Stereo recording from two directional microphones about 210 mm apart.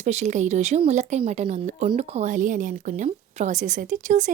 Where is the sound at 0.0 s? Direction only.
35° right (ahead or behind).